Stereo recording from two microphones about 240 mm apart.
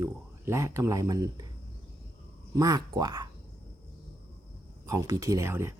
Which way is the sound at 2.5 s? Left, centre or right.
Centre.